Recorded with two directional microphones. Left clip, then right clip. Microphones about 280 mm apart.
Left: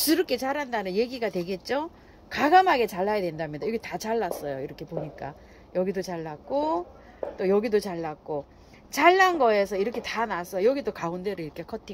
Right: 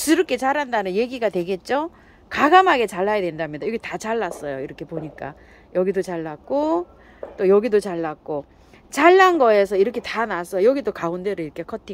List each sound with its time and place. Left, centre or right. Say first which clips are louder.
0.0 s speech: right 6 dB; centre